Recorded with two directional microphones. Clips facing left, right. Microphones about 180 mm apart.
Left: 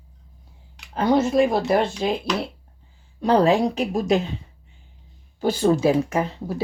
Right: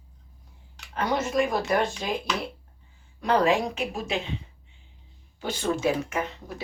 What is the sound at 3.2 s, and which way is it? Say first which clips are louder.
Speech: left 5 dB; 35° left (ahead or behind).